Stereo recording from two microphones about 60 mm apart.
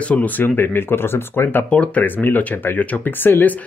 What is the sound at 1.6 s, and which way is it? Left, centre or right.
Speech, left.